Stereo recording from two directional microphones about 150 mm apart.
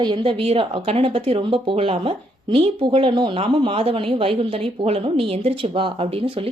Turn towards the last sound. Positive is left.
turn(degrees=-40)  # may be behind; listen again after turning